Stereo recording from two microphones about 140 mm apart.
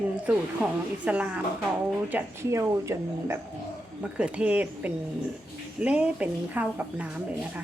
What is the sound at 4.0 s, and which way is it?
A woman's voice, 10° right (ahead or behind).